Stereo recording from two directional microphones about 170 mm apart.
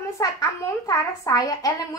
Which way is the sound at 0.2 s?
20° left (ahead or behind).